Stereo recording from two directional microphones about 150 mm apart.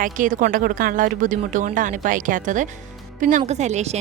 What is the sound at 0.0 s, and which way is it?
A woman's voice, 65° right (ahead or behind).